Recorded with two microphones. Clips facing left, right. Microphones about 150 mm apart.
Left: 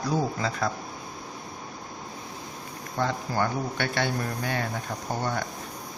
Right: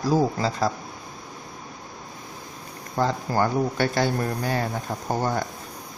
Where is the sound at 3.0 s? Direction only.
40° right (ahead or behind).